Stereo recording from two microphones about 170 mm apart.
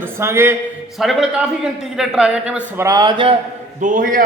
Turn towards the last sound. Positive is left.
turn(degrees=-55)  # may be behind; listen again after turning